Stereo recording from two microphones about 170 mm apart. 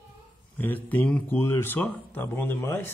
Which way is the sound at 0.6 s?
10° left (ahead or behind).